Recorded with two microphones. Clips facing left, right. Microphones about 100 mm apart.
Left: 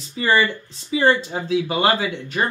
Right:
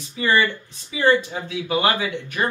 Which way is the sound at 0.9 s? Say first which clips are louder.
Left 1 dB; 30° left (ahead or behind).